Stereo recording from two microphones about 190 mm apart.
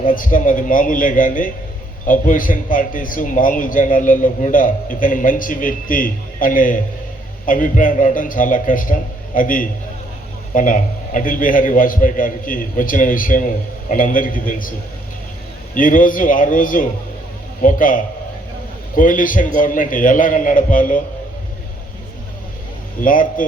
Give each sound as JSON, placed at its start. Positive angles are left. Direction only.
{"t": 0.0, "sound": "a man's voice", "side_deg": 45}
{"t": 15.7, "sound": "a man's voice", "side_deg": 45}
{"t": 23.0, "sound": "a man's voice", "side_deg": 45}